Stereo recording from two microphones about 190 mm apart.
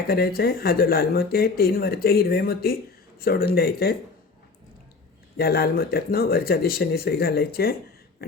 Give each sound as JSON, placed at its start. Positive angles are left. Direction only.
{"t": 0.1, "sound": "speech", "side_deg": 55}
{"t": 5.4, "sound": "speech", "side_deg": 55}
{"t": 8.2, "sound": "a sound", "side_deg": 50}